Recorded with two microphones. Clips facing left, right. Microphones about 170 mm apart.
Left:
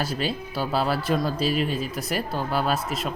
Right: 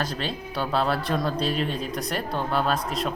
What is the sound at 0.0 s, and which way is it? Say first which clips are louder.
Speech: left 2 dB; 5° left (ahead or behind).